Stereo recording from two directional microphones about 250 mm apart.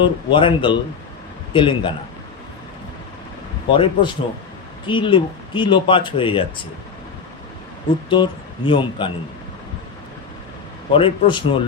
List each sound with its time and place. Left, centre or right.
0.0 s speech: centre
3.7 s speech: centre
8.1 s speech: centre
10.9 s speech: centre